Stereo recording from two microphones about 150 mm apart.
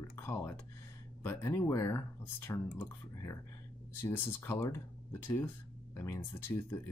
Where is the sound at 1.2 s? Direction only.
15° left (ahead or behind).